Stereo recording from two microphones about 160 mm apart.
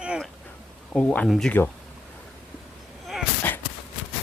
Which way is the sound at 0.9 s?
10° left (ahead or behind).